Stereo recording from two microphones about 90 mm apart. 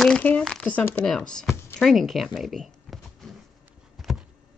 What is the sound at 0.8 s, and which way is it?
Speech, 25° left (ahead or behind).